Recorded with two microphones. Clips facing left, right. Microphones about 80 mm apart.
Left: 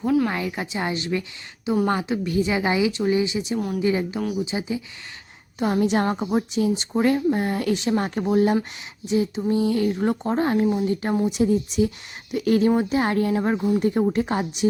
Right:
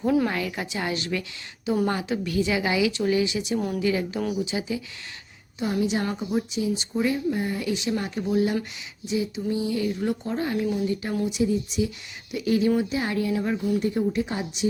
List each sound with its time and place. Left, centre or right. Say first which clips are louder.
0.0 s a woman's voice: left 2 dB; centre
0.3 s a woman's voice: left 2 dB; centre
5.5 s speech: left 4 dB; left
11.3 s speech: left 4 dB; left
14.0 s speech: left 4 dB; left